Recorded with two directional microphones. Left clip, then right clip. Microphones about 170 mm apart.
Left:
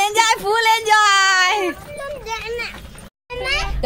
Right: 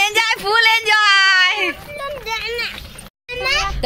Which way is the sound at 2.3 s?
25° right (ahead or behind).